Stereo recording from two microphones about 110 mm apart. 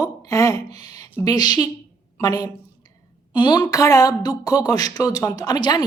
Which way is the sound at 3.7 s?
30° left (ahead or behind).